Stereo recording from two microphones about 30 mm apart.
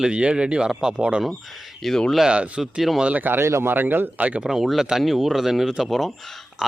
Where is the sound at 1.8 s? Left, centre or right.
Centre.